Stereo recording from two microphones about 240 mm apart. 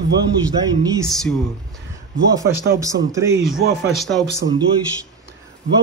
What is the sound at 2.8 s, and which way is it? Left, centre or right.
Speech, centre.